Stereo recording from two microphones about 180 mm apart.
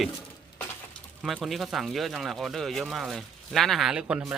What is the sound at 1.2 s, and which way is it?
Speech, centre (ahead or behind).